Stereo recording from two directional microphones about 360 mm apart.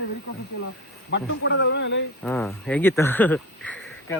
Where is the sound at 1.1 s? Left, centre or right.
Left.